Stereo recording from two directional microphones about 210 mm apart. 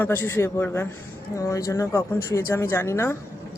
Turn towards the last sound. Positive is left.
turn(degrees=10)  # may be behind; listen again after turning